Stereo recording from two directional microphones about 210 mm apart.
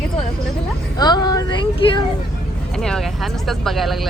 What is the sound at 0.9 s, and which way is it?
Speech, 20° left (ahead or behind).